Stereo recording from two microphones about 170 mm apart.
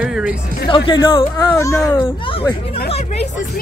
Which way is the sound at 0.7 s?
30° left (ahead or behind).